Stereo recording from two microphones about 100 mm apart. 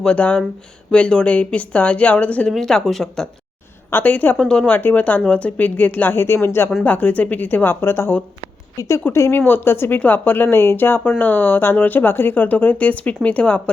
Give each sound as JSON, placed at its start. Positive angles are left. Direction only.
{"t": 0.0, "sound": "speech", "side_deg": 10}
{"t": 3.8, "sound": "speech", "side_deg": 20}